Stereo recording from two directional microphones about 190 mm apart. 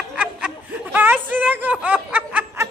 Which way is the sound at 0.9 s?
10° right (ahead or behind).